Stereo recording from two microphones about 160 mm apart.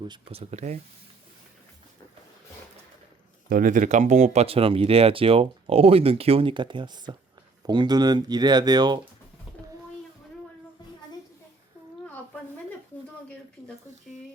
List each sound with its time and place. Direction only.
0.1 s speech: 35° right (ahead or behind)
3.5 s speech: 55° right (ahead or behind); by 9.0 s 25° right (ahead or behind)